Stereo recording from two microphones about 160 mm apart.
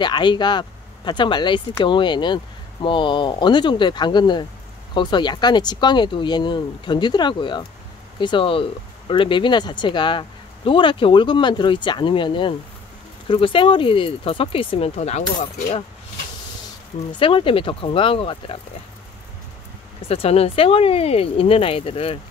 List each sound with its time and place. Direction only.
0.0 s speech: 30° left (ahead or behind); by 15.2 s 45° left (ahead or behind)
17.2 s speech: 35° left (ahead or behind)
20.1 s speech: 40° left (ahead or behind)